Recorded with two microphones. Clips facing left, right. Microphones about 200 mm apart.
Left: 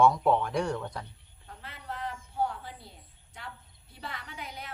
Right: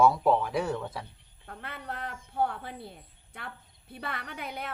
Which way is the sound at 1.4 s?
60° right (ahead or behind).